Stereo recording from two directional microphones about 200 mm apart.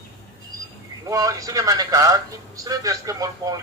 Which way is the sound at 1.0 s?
15° right (ahead or behind).